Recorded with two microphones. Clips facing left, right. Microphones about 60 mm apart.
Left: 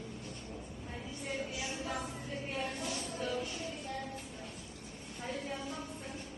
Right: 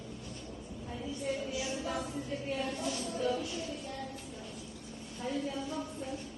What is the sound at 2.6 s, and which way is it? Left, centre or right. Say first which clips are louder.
Music: right 3 dB; left.